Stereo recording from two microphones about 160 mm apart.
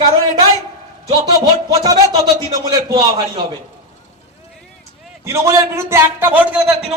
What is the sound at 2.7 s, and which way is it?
Speech, 25° right (ahead or behind).